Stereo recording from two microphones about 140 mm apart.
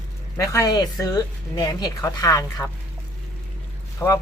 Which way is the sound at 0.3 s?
20° left (ahead or behind).